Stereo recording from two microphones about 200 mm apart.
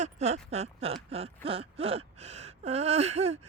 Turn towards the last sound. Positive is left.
turn(degrees=-30)  # may be behind; listen again after turning